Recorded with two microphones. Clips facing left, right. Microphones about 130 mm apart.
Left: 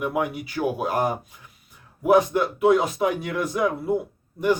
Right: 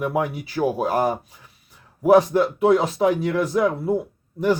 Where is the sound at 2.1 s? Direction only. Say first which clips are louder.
Right 3 dB; 35° right (ahead or behind).